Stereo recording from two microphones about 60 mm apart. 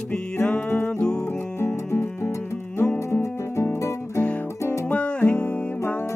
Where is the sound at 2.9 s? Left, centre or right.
Left.